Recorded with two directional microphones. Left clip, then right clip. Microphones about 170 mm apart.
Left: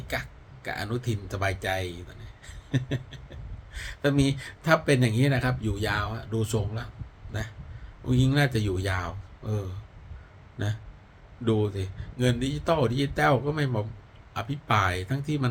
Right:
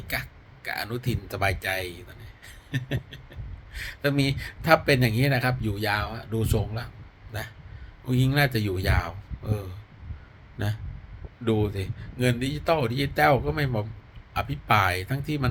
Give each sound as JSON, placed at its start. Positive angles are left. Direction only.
{"t": 0.1, "sound": "speech", "side_deg": 10}